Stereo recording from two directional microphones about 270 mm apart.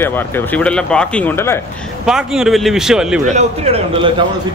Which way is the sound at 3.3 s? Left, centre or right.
Right.